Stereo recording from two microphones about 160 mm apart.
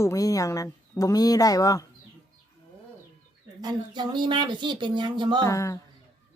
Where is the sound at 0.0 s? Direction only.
20° left (ahead or behind).